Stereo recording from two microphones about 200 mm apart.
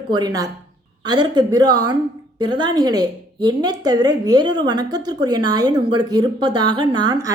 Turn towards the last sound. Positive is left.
turn(degrees=-20)  # may be behind; listen again after turning